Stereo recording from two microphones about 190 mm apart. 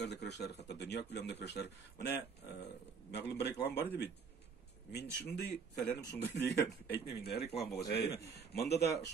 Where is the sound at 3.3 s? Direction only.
60° left (ahead or behind).